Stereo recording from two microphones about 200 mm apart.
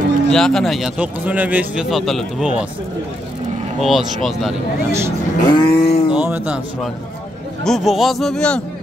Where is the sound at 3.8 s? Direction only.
Centre (ahead or behind).